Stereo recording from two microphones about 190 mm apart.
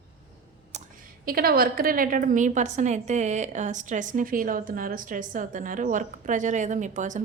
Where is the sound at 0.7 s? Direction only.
35° right (ahead or behind).